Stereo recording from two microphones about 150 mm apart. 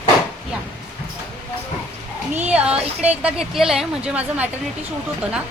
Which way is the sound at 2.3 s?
10° right (ahead or behind).